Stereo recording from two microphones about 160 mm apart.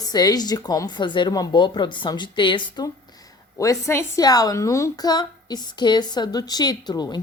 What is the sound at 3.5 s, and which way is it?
A woman's voice, 20° left (ahead or behind).